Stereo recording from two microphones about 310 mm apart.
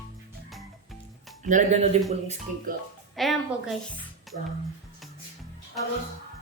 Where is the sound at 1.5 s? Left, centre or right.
Right.